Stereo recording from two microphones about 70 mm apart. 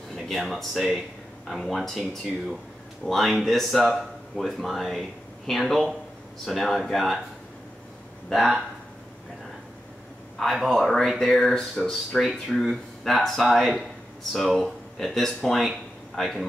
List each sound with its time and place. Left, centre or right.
0.1 s speech: centre
8.3 s speech: centre
10.4 s speech: centre